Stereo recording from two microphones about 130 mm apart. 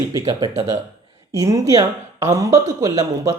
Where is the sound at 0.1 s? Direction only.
30° right (ahead or behind).